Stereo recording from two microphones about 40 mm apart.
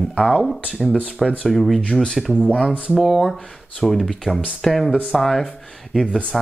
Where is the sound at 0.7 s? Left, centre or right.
Right.